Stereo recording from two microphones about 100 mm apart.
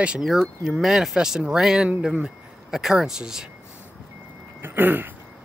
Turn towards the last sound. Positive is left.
turn(degrees=-20)  # may be behind; listen again after turning